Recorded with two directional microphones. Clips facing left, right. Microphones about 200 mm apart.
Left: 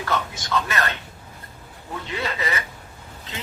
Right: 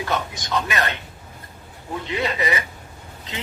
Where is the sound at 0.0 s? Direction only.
15° right (ahead or behind).